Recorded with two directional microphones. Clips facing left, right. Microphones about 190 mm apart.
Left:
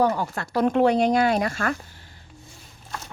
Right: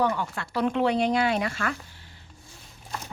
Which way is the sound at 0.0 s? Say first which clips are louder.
Left 4 dB; 40° left (ahead or behind).